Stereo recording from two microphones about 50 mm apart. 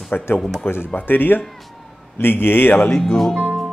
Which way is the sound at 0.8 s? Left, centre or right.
Left.